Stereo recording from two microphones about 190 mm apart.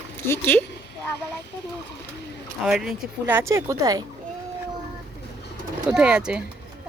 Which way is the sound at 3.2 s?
10° right (ahead or behind).